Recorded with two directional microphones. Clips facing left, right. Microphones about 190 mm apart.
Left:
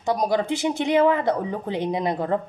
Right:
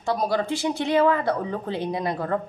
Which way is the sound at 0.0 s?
15° left (ahead or behind).